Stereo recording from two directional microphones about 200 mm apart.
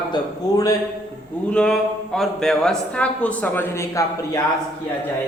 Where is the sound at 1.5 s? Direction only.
5° left (ahead or behind).